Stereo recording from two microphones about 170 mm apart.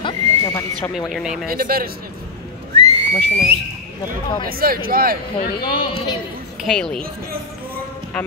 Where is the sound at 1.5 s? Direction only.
60° right (ahead or behind).